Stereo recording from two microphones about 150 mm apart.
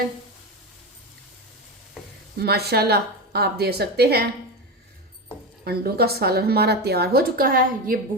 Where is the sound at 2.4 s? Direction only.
90° right.